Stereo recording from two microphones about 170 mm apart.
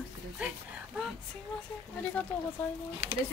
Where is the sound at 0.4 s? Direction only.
10° right (ahead or behind).